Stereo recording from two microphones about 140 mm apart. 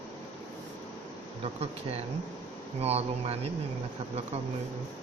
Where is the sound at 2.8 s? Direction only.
45° right (ahead or behind).